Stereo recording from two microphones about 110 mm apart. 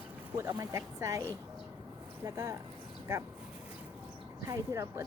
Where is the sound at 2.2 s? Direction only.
30° right (ahead or behind).